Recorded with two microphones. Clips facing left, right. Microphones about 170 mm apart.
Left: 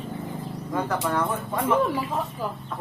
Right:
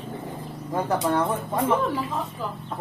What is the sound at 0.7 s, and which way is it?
Speech, 25° right (ahead or behind).